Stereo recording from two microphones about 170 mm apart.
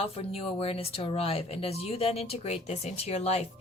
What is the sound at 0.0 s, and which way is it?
Speech, 35° left (ahead or behind).